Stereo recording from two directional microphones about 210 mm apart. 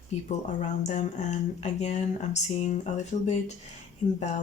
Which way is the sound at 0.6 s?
35° left (ahead or behind).